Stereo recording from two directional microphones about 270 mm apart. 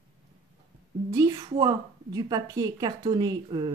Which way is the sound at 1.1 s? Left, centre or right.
Centre.